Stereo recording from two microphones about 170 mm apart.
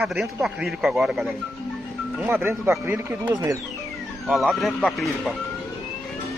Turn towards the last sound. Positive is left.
turn(degrees=0)  # may be behind; listen again after turning